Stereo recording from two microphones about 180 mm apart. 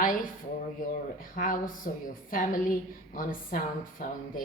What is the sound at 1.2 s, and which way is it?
A woman's voice, 50° left (ahead or behind).